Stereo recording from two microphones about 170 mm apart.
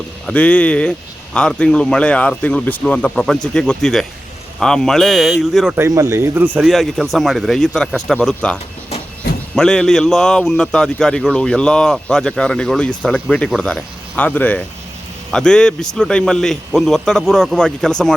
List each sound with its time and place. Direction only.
0.3 s a man's voice: 10° left (ahead or behind)
5.7 s a man's voice: 15° right (ahead or behind); by 8.5 s 5° left (ahead or behind)
9.2 s a sound: 65° left (ahead or behind)
9.6 s a man's voice: 5° left (ahead or behind)